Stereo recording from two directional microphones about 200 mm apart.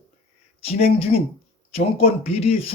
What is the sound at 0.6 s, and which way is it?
Speech, 30° left (ahead or behind).